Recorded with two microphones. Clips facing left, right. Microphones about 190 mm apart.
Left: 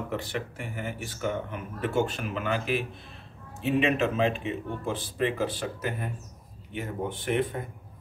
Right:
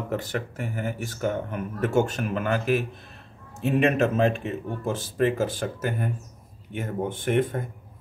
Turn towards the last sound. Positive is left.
turn(degrees=-45)  # may be behind; listen again after turning